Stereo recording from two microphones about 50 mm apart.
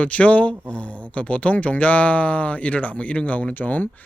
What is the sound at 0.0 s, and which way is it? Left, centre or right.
Speech, left.